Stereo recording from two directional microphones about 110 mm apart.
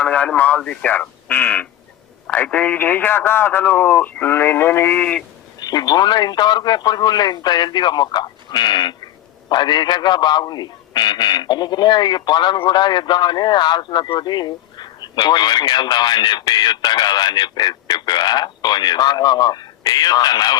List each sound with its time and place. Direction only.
0.0 s speech: 10° left (ahead or behind)
5.5 s a man's voice: 40° left (ahead or behind)